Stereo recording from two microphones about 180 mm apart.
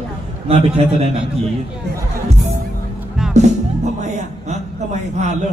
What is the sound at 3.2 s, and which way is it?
Music, 5° right (ahead or behind).